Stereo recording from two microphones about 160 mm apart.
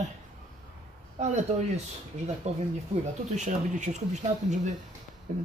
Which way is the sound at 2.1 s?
45° right (ahead or behind).